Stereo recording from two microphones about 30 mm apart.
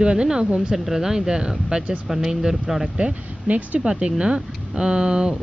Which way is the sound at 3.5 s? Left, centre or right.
Right.